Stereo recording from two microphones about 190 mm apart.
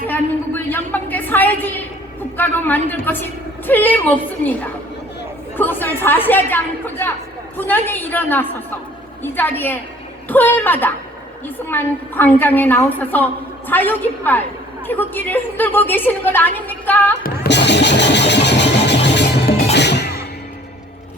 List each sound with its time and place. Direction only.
0.1 s a woman's voice: 10° left (ahead or behind)
17.2 s music: 60° left (ahead or behind)